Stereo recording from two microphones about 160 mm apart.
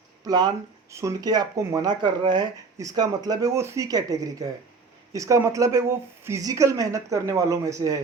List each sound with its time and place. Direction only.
0.3 s speech: 25° right (ahead or behind)